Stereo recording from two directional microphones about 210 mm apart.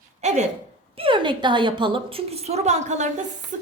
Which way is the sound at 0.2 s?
30° right (ahead or behind).